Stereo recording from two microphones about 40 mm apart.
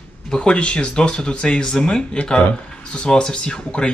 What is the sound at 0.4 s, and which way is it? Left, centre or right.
Speech, left.